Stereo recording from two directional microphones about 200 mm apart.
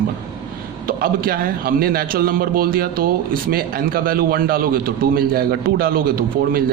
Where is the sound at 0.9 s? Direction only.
45° right (ahead or behind).